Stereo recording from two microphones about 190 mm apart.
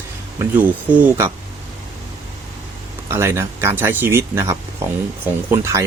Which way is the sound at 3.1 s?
15° right (ahead or behind).